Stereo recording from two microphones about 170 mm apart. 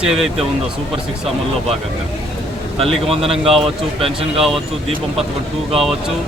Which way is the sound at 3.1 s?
35° right (ahead or behind).